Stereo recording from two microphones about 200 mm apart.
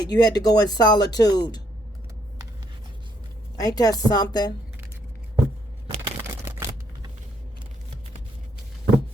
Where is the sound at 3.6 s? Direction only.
20° left (ahead or behind).